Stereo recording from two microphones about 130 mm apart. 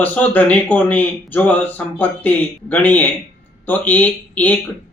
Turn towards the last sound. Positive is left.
turn(degrees=10)  # may be behind; listen again after turning